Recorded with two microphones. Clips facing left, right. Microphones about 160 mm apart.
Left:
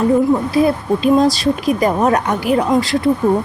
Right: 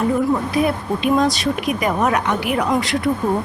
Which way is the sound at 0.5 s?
35° left (ahead or behind).